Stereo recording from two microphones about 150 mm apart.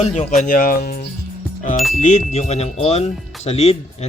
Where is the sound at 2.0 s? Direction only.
50° left (ahead or behind).